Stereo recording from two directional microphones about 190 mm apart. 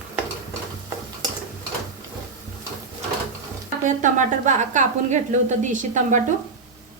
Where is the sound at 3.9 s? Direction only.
40° right (ahead or behind).